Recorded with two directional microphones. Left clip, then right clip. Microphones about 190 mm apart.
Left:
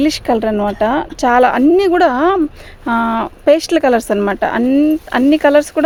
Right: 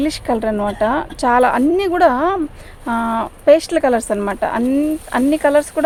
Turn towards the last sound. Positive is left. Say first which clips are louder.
# left 4 dB
turn(degrees=45)  # may be behind; listen again after turning